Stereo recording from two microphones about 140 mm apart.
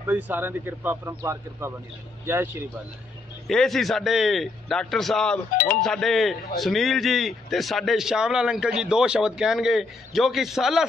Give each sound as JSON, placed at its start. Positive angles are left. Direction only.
{"t": 0.0, "sound": "speech", "side_deg": -15}
{"t": 3.4, "sound": "a man's voice", "side_deg": 0}